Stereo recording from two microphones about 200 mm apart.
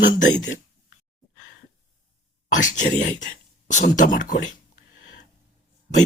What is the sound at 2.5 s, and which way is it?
Speech, 40° left (ahead or behind).